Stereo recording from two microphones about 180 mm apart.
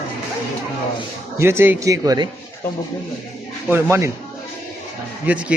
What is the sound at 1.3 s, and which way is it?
Speech, 15° right (ahead or behind).